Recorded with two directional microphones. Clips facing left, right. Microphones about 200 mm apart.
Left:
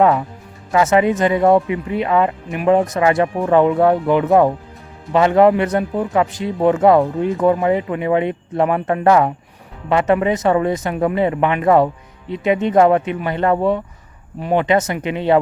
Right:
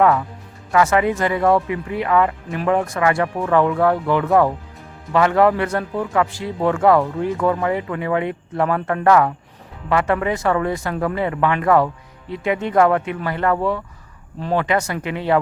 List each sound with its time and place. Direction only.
0.0 s a man's voice: 25° left (ahead or behind)